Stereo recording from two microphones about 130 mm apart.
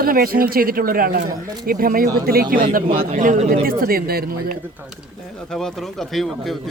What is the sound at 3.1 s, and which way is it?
Speech, 80° right.